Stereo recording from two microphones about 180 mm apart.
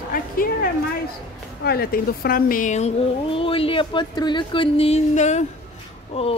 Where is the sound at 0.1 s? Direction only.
50° left (ahead or behind).